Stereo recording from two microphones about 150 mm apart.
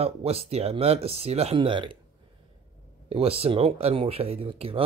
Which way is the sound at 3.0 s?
40° right (ahead or behind).